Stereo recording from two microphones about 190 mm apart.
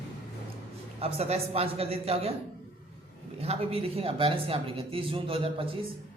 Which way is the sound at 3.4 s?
30° right (ahead or behind).